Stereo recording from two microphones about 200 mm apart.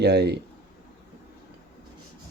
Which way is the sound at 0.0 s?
55° right (ahead or behind).